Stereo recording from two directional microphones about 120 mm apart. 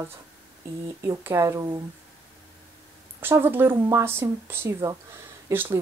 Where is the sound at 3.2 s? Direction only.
15° right (ahead or behind).